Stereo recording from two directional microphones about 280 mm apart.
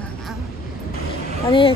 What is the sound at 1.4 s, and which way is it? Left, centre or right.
Speech, centre.